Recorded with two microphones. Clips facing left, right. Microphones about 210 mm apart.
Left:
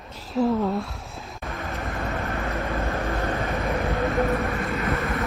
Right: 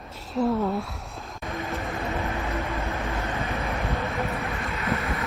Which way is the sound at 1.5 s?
Centre (ahead or behind).